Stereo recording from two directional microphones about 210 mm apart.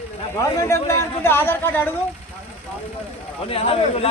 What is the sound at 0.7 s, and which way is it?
A man's voice, 15° left (ahead or behind).